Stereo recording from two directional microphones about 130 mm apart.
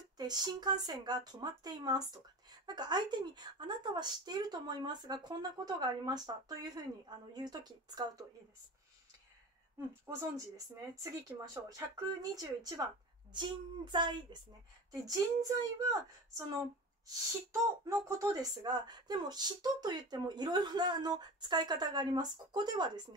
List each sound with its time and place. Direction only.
0.2 s speech: 30° right (ahead or behind)
10.1 s speech: 20° right (ahead or behind)